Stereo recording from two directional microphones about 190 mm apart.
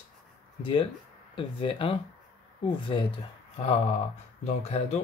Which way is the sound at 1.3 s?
25° left (ahead or behind).